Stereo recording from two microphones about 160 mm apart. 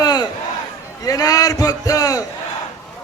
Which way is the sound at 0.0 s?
25° left (ahead or behind).